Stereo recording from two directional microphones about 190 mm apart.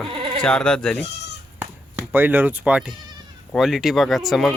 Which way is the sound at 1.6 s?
10° right (ahead or behind).